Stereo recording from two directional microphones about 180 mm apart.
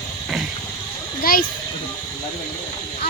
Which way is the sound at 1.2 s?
55° left (ahead or behind).